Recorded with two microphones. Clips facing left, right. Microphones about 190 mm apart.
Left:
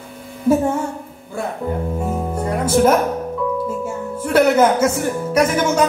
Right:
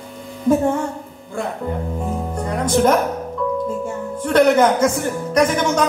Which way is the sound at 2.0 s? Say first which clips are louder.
Left 2 dB; 5° left (ahead or behind).